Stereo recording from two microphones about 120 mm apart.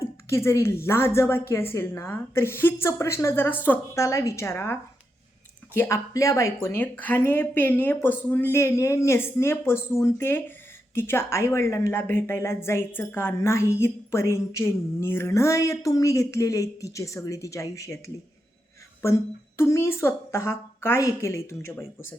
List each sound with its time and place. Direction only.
0.3 s a woman's voice: 25° left (ahead or behind)